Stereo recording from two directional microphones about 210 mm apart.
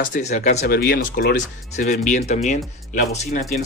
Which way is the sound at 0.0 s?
35° left (ahead or behind).